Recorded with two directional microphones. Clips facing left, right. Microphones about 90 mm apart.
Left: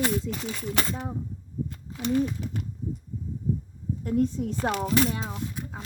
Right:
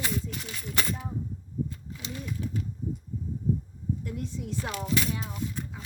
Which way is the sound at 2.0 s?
65° left (ahead or behind).